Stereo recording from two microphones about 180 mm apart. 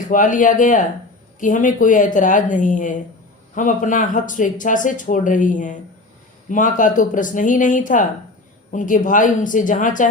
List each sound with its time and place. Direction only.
0.1 s speech: 45° left (ahead or behind)